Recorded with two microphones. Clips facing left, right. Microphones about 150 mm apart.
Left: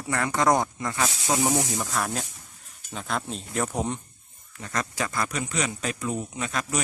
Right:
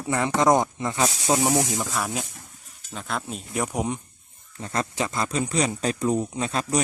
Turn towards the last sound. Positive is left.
turn(degrees=-30)  # may be behind; listen again after turning